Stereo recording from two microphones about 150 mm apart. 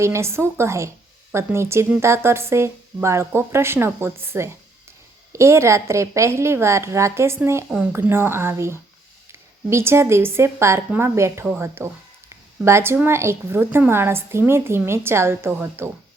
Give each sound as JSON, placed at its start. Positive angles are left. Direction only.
{"t": 0.0, "sound": "a woman's voice", "side_deg": -20}